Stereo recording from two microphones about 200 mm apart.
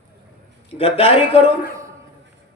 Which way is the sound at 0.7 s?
30° left (ahead or behind).